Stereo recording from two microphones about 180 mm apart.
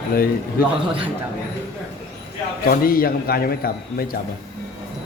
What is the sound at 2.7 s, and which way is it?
Speech, 55° left (ahead or behind).